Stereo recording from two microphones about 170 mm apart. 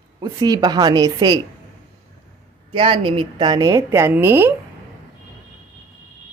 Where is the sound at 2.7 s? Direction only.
30° right (ahead or behind); by 4.5 s 15° right (ahead or behind).